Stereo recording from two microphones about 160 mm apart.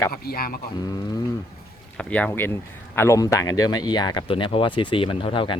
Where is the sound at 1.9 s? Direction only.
10° left (ahead or behind).